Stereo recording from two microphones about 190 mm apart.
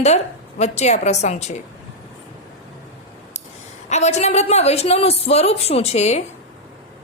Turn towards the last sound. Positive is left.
turn(degrees=35)  # may be behind; listen again after turning